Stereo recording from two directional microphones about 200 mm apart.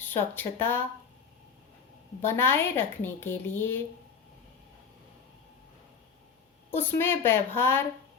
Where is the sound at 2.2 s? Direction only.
10° left (ahead or behind).